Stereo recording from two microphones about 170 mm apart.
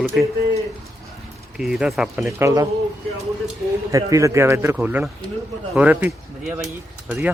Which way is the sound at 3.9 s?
20° right (ahead or behind).